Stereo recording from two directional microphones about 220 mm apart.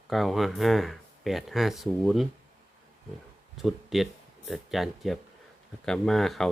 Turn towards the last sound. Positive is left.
turn(degrees=0)  # may be behind; listen again after turning